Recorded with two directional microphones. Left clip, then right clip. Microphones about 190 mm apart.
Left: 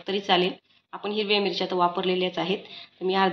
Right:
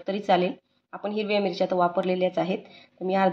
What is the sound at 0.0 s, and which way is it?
A woman's voice, 45° right (ahead or behind).